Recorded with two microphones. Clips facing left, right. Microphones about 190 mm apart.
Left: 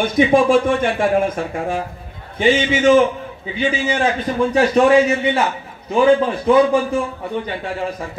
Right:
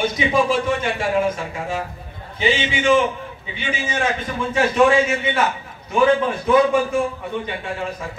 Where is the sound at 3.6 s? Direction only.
30° left (ahead or behind).